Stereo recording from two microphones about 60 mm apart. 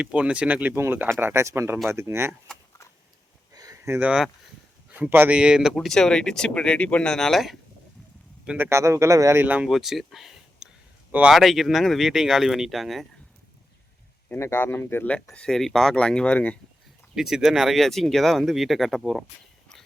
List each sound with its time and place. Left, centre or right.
0.0 s speech: centre
0.7 s speech: right
1.2 s speech: right
3.5 s a sound: right
4.9 s speech: right
5.3 s speech: centre
5.7 s speech: centre; by 7.0 s left
7.0 s speech: centre
8.5 s speech: right
8.8 s speech: right
9.6 s speech: centre
14.3 s speech: left
15.3 s speech: centre
17.2 s speech: centre